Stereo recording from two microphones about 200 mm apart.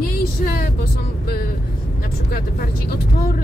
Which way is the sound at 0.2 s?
50° left (ahead or behind).